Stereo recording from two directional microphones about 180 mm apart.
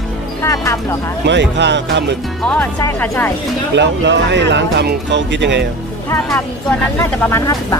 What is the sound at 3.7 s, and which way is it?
Speech, 80° right.